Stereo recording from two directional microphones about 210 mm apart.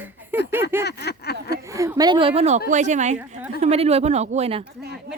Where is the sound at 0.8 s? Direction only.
50° left (ahead or behind).